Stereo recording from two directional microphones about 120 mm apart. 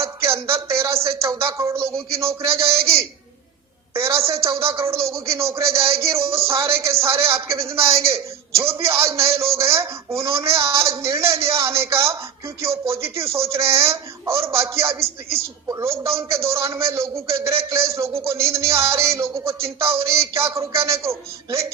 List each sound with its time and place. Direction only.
0.0 s speech: 25° right (ahead or behind)
3.9 s speech: 25° right (ahead or behind)